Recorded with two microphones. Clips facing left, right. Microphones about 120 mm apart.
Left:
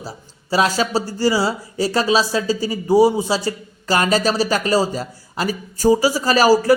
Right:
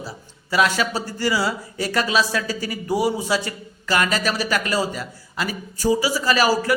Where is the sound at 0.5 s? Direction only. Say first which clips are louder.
Left 3 dB; 35° left (ahead or behind).